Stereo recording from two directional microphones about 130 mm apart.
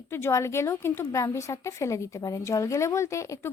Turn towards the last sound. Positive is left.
turn(degrees=25)  # may be behind; listen again after turning